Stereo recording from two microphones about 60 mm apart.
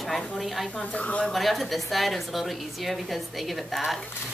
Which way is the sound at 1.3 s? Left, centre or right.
Centre.